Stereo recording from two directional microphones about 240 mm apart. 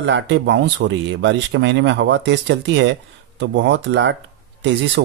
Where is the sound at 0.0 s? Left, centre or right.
Right.